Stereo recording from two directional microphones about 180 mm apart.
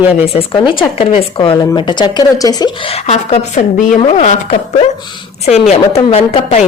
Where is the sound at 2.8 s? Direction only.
35° left (ahead or behind).